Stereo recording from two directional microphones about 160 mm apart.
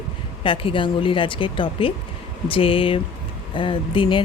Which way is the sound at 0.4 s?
35° left (ahead or behind).